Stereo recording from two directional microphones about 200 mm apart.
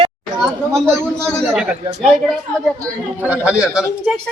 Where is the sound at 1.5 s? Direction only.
5° right (ahead or behind).